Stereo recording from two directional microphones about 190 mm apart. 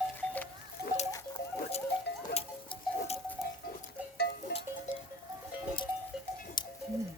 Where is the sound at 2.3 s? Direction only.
35° left (ahead or behind).